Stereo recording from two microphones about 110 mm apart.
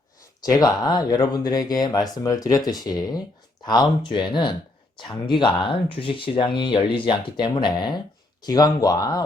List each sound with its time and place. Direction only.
0.4 s speech: 35° left (ahead or behind)